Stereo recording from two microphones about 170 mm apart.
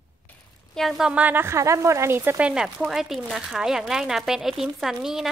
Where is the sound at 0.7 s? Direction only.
Centre (ahead or behind).